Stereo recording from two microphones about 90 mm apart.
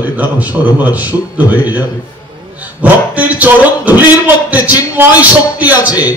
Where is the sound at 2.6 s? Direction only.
15° right (ahead or behind).